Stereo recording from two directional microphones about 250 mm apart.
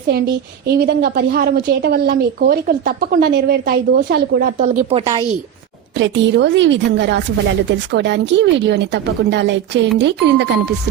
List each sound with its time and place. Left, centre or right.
0.7 s a woman's voice: right
4.9 s a woman's voice: right
6.0 s speech: right